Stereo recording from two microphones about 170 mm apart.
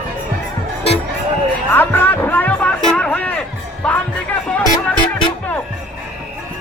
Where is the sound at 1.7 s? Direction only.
10° left (ahead or behind).